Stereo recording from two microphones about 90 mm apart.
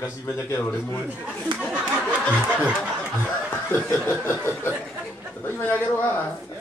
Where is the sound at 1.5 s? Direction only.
60° right (ahead or behind).